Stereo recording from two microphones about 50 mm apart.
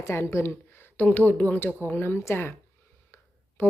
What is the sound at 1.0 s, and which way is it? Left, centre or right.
A woman's voice, left.